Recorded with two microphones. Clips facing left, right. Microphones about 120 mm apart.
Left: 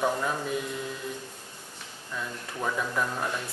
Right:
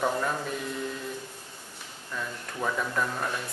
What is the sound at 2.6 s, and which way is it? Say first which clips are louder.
Speech: even; 5° left (ahead or behind).